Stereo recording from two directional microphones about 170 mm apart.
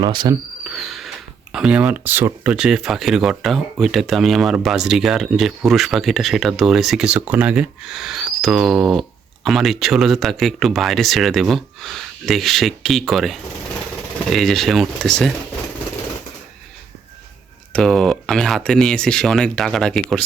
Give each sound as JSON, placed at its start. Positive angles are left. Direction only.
{"t": 0.0, "sound": "speech", "side_deg": -25}
{"t": 0.6, "sound": "a sound", "side_deg": 0}
{"t": 1.5, "sound": "speech", "side_deg": -5}
{"t": 17.7, "sound": "speech", "side_deg": 5}